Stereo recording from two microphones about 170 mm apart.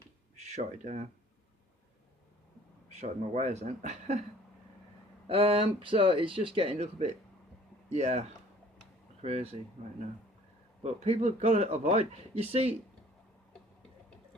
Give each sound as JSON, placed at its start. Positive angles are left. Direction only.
{"t": 0.3, "sound": "speech", "side_deg": -40}
{"t": 2.9, "sound": "speech", "side_deg": -40}
{"t": 5.3, "sound": "speech", "side_deg": -35}
{"t": 10.8, "sound": "speech", "side_deg": -40}